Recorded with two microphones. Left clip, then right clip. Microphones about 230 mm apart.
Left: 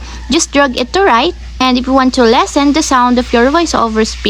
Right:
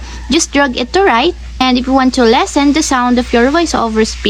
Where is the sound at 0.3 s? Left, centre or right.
Centre.